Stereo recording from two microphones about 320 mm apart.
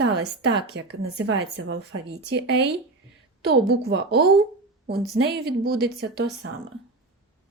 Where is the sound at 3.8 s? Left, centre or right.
Right.